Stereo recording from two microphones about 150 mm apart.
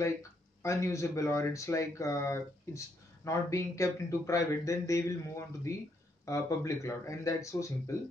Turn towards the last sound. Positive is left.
turn(degrees=20)  # may be behind; listen again after turning